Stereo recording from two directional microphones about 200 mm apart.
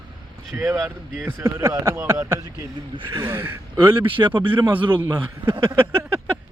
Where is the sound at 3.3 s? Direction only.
10° right (ahead or behind).